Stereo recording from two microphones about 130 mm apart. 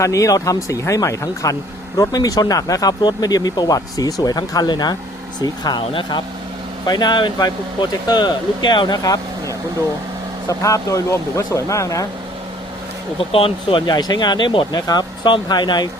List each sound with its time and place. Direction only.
0.0 s speech: 25° left (ahead or behind)
13.1 s speech: 45° left (ahead or behind)